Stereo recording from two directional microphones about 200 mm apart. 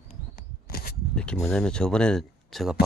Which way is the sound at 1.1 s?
5° left (ahead or behind).